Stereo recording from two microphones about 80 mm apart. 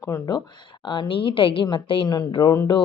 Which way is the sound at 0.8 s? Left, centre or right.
Left.